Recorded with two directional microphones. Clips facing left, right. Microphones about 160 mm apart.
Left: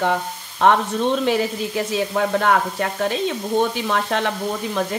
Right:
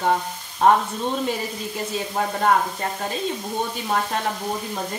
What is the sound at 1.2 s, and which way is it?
Sizzle, 90° left.